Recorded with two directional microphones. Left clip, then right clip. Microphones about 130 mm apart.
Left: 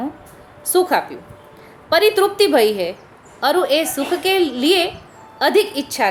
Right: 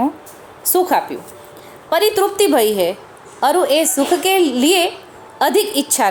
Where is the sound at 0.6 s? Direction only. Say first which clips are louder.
Right 1 dB; 25° right (ahead or behind).